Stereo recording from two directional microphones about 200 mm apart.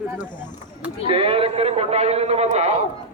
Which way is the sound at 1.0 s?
30° right (ahead or behind).